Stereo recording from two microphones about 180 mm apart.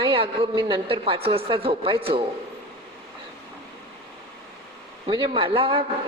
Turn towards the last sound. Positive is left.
turn(degrees=-30)  # may be behind; listen again after turning